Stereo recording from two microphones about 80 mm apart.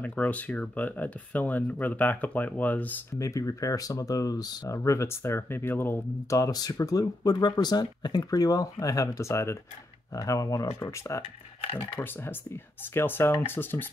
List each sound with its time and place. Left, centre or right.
0.0 s speech: centre
3.2 s speech: left
4.7 s speech: left
6.3 s speech: left
12.0 s speech: left